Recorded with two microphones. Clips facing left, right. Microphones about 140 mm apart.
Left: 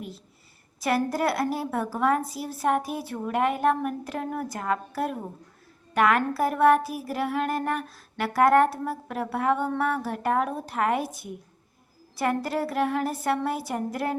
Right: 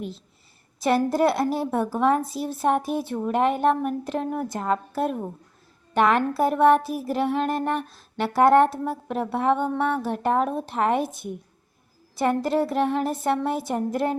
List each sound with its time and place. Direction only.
0.8 s a woman's voice: 25° right (ahead or behind)